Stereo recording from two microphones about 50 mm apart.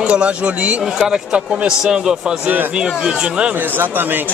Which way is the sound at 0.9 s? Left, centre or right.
Centre.